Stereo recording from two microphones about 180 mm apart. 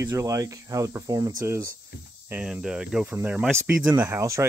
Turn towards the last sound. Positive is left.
turn(degrees=-15)  # may be behind; listen again after turning